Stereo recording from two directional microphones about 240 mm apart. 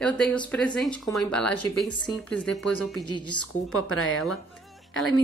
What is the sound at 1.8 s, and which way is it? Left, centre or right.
Speech, centre.